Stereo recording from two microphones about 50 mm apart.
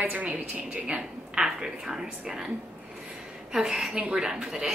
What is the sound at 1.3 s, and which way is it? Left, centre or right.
Speech, centre.